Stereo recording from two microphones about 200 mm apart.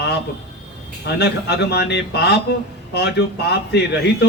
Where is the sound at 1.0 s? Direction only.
55° left (ahead or behind).